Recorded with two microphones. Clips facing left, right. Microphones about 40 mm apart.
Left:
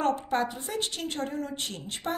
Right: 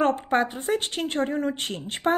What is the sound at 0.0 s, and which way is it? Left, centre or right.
A woman's voice, right.